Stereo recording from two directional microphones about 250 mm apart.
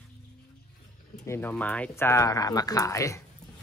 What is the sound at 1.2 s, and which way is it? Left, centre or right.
Speech, centre.